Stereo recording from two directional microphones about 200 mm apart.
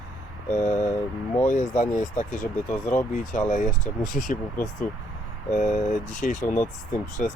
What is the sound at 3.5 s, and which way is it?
Speech, 40° left (ahead or behind).